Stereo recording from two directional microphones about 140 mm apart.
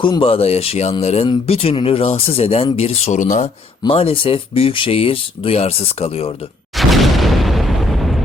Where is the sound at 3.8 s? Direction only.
40° left (ahead or behind).